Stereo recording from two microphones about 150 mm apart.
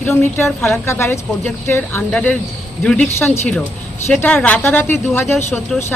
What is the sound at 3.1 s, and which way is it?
Speech, 15° left (ahead or behind).